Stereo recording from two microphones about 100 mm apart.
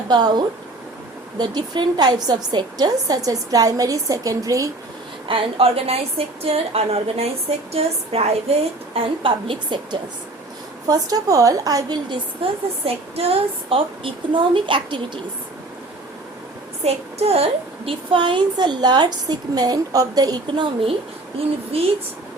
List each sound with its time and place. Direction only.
0.1 s a woman's voice: 45° right (ahead or behind)
5.3 s a woman's voice: 70° right (ahead or behind); by 8.5 s 90° right
9.0 s a woman's voice: 60° right (ahead or behind)
10.8 s a woman's voice: 40° right (ahead or behind)
12.4 s a woman's voice: 65° right (ahead or behind)
12.8 s a woman's voice: 85° right; by 15.2 s 55° right (ahead or behind)
16.8 s a woman's voice: 90° right; by 20.7 s 40° right (ahead or behind)
21.4 s a woman's voice: 70° right (ahead or behind)